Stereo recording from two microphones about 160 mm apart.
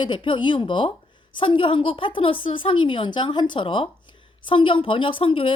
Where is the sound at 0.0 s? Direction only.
30° left (ahead or behind).